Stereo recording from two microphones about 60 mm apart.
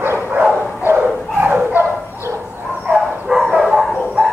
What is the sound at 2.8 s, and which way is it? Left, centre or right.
Dog, centre.